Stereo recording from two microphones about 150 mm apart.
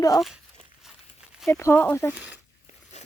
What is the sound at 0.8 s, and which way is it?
Walk, 5° right (ahead or behind).